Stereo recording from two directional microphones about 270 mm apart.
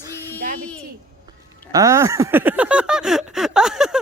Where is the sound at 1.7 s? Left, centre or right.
Centre.